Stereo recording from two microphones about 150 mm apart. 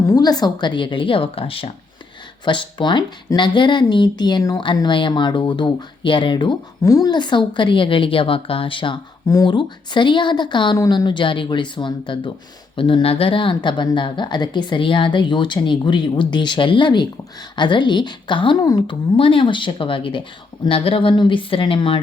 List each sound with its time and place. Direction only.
0.1 s speech: 25° left (ahead or behind)